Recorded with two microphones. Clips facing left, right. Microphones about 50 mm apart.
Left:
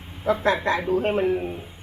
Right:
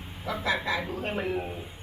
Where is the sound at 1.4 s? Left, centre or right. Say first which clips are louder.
Left 5 dB; centre.